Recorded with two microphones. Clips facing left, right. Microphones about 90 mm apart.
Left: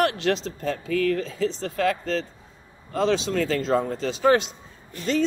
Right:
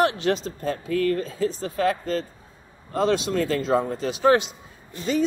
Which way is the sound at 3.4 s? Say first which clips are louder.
Even; 90° left.